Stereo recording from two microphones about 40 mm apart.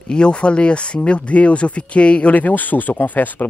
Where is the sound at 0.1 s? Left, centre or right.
Left.